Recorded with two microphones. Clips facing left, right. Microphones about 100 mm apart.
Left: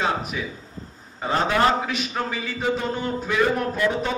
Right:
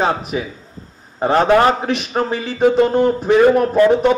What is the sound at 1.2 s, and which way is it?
A man's voice, 60° right (ahead or behind).